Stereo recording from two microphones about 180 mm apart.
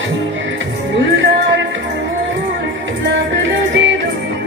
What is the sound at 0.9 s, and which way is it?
Music, 85° right.